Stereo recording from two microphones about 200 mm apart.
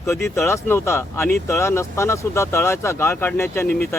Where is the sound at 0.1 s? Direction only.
15° left (ahead or behind).